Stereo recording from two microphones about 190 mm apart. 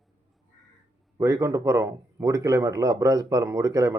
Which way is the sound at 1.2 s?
15° right (ahead or behind).